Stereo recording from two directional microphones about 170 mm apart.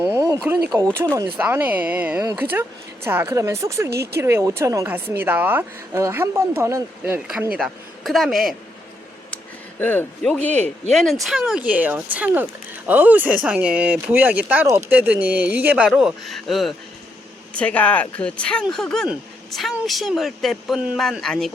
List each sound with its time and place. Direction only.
0.0 s a sound: 15° right (ahead or behind)
0.4 s speech: 10° right (ahead or behind)
7.0 s speech: 5° right (ahead or behind)
9.8 s speech: 10° left (ahead or behind)